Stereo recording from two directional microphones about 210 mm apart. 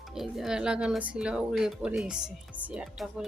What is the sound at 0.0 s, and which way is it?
Speech, centre (ahead or behind).